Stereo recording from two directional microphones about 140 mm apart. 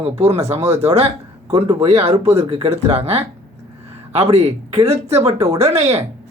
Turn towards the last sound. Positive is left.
turn(degrees=-50)  # may be behind; listen again after turning